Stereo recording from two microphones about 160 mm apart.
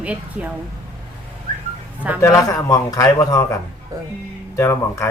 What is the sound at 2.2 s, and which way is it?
A man's voice, 20° left (ahead or behind).